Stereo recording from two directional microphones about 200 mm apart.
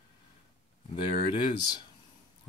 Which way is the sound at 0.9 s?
25° left (ahead or behind).